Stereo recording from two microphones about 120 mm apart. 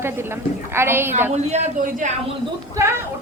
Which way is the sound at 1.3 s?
70° right (ahead or behind).